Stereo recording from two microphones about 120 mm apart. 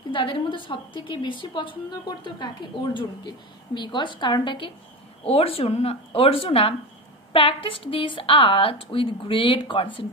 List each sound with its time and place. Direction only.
0.1 s a woman's voice: 45° left (ahead or behind)
5.2 s a woman's voice: 55° left (ahead or behind)